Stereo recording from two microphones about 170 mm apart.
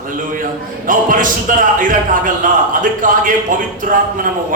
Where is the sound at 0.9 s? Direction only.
50° right (ahead or behind).